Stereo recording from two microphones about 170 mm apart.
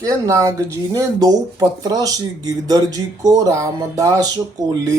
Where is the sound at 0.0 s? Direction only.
20° right (ahead or behind).